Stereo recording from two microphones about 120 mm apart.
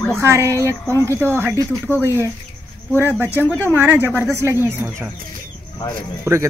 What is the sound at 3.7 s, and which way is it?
Speech, 15° right (ahead or behind).